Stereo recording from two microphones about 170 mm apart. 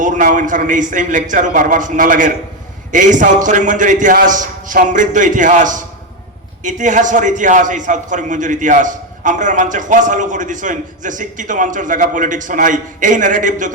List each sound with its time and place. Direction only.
0.0 s a man's voice: 50° right (ahead or behind)